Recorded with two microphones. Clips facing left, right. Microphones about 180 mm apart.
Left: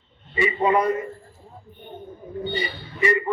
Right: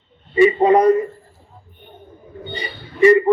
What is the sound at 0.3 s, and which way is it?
Speech, 35° right (ahead or behind).